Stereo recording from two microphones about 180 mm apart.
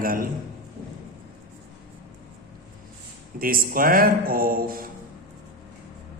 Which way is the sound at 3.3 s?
55° right (ahead or behind).